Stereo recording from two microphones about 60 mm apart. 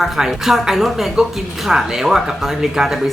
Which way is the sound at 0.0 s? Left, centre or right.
Centre.